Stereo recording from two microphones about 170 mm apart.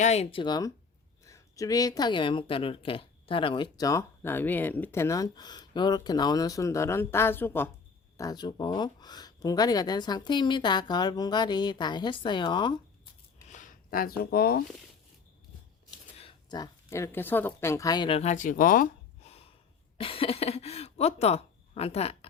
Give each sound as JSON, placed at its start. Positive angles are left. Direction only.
{"t": 0.0, "sound": "speech", "side_deg": 40}
{"t": 13.5, "sound": "a sound", "side_deg": 50}
{"t": 14.2, "sound": "speech", "side_deg": 65}
{"t": 16.1, "sound": "a sound", "side_deg": 35}
{"t": 16.6, "sound": "a woman's voice", "side_deg": 15}
{"t": 18.2, "sound": "speech", "side_deg": 45}
{"t": 20.0, "sound": "speech", "side_deg": 30}